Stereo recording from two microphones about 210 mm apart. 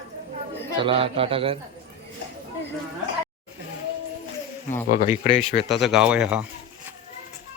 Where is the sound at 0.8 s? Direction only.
25° right (ahead or behind).